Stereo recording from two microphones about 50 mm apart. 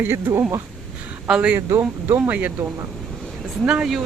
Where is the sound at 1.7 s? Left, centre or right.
Right.